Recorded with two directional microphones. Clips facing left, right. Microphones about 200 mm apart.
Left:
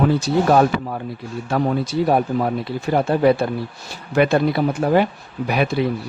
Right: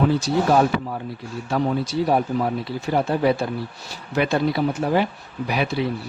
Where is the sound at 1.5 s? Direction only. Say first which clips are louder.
Left 2 dB; 55° left (ahead or behind).